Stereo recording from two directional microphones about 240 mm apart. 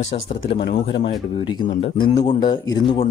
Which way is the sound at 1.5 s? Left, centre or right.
Centre.